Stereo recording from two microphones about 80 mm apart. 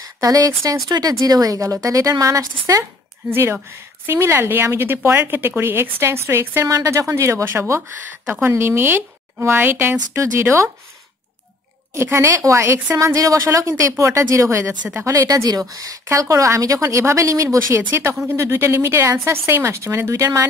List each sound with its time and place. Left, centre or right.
0.0 s a woman's voice: right
3.3 s a woman's voice: right
6.7 s a woman's voice: right
11.9 s a woman's voice: right